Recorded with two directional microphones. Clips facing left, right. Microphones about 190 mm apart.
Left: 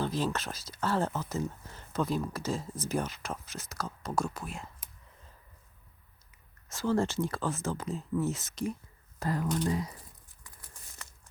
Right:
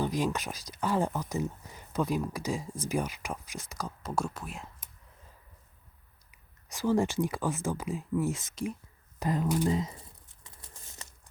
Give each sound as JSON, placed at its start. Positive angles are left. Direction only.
{"t": 0.0, "sound": "speech", "side_deg": -15}
{"t": 6.7, "sound": "speech", "side_deg": -15}
{"t": 9.7, "sound": "a sound", "side_deg": -25}